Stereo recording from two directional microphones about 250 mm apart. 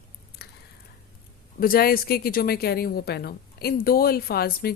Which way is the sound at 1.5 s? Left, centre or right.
Left.